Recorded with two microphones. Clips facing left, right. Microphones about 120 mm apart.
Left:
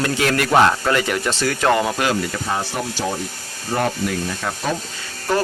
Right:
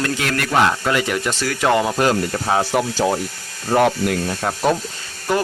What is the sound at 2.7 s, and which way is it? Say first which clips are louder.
Speech: right 7 dB; 90° right.